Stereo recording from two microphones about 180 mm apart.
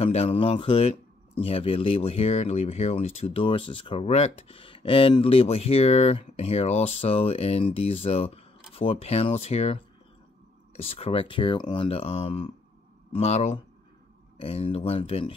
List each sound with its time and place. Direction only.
0.0 s speech: 35° left (ahead or behind)
10.8 s speech: 35° left (ahead or behind)